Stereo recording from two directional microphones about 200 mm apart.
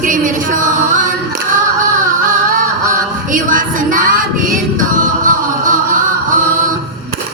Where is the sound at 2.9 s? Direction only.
40° right (ahead or behind).